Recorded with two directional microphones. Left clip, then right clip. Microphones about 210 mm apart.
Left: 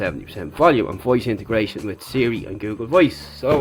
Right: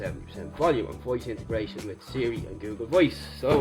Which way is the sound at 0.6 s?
35° left (ahead or behind).